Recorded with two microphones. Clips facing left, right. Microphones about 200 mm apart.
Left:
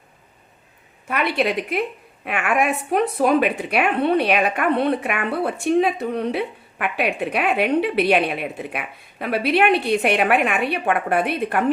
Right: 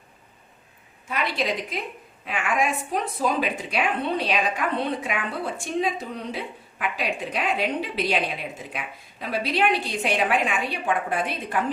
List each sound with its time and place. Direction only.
1.0 s a woman's voice: 60° left (ahead or behind)